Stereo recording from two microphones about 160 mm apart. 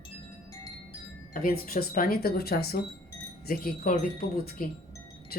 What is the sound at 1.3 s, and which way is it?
Speech, 65° left (ahead or behind).